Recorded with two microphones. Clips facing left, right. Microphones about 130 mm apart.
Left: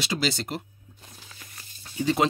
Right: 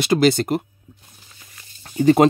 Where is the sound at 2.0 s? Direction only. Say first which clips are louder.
Right 10 dB; 50° right (ahead or behind).